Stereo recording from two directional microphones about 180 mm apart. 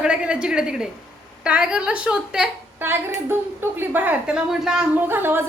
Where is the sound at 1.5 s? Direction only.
5° right (ahead or behind).